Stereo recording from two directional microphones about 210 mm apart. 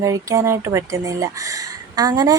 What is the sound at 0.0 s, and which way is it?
A woman's voice, 15° right (ahead or behind).